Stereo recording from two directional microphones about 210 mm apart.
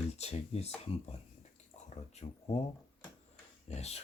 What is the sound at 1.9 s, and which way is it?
Speech, 30° left (ahead or behind).